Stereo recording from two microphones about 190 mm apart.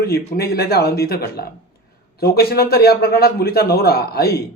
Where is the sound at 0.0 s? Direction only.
55° left (ahead or behind).